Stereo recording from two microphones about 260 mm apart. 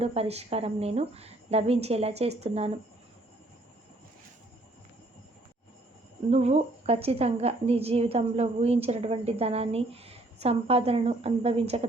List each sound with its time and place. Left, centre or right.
0.0 s a woman's voice: right
6.3 s a woman's voice: right